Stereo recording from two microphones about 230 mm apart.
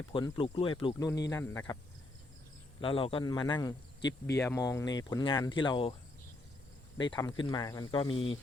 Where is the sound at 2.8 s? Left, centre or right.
Left.